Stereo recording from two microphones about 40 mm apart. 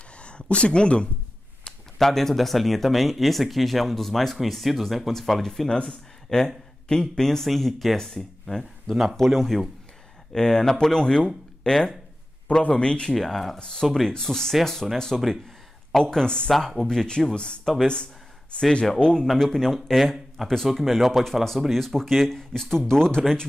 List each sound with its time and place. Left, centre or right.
0.2 s speech: left
2.0 s speech: centre
10.3 s speech: centre
13.1 s speech: centre
13.6 s speech: centre
16.5 s speech: centre
16.8 s speech: centre
18.9 s speech: left
19.3 s speech: centre
20.7 s speech: centre